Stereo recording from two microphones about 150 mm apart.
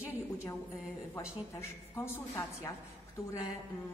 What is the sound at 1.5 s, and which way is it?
A woman's voice, 15° left (ahead or behind).